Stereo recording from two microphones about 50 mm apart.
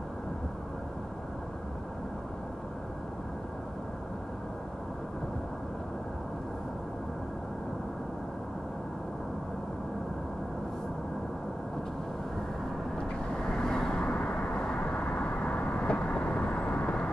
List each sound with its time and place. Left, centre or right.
12.9 s vehicle: centre